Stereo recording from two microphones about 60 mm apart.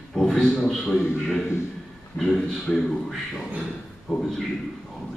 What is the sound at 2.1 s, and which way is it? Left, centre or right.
A man's voice, centre.